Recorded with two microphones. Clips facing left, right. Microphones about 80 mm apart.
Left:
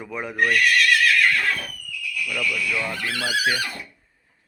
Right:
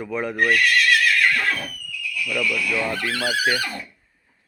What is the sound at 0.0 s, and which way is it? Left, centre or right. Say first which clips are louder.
Speech: right 5 dB; centre.